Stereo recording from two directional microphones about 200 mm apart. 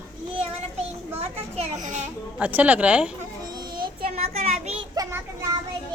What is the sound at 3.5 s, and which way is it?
Child singing, 20° right (ahead or behind).